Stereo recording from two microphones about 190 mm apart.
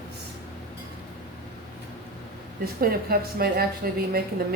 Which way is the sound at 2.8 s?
50° right (ahead or behind).